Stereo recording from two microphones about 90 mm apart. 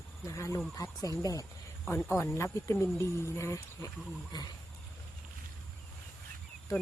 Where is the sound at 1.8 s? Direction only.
30° left (ahead or behind).